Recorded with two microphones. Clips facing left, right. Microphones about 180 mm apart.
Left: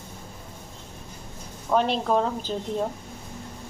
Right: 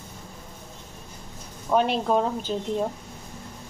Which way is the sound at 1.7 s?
5° right (ahead or behind).